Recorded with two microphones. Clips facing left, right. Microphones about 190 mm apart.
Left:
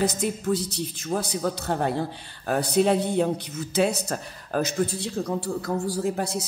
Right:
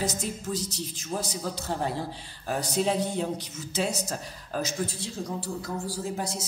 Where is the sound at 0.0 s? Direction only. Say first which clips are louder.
Left 6 dB; 60° left (ahead or behind).